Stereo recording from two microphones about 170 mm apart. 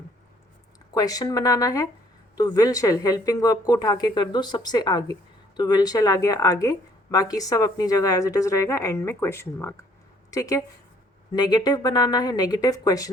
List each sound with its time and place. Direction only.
0.9 s speech: 20° left (ahead or behind)